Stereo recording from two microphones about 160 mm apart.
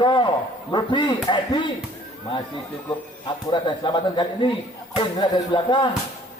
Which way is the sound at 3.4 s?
30° left (ahead or behind).